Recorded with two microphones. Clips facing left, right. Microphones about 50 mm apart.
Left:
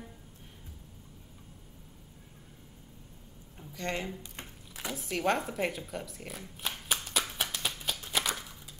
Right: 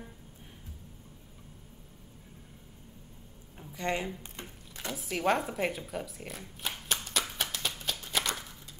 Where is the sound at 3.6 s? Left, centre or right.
Centre.